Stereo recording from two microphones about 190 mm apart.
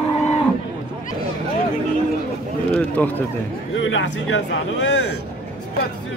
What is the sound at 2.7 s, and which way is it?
Speech, 10° left (ahead or behind).